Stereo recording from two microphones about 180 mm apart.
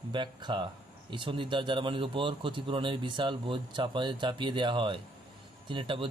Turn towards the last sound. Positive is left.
turn(degrees=-25)  # may be behind; listen again after turning